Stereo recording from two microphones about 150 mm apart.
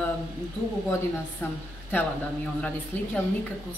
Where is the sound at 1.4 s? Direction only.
15° left (ahead or behind).